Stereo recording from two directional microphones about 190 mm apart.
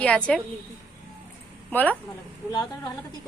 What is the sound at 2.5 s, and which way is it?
Speech, 20° left (ahead or behind).